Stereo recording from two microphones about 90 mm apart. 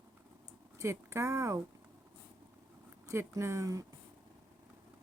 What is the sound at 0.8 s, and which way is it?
Speech, 35° right (ahead or behind).